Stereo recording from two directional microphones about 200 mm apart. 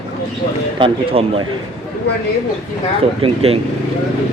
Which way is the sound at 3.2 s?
30° right (ahead or behind).